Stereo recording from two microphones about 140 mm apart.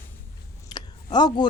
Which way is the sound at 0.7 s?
30° left (ahead or behind).